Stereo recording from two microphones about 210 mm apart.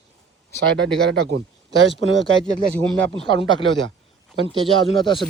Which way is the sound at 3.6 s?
65° right (ahead or behind).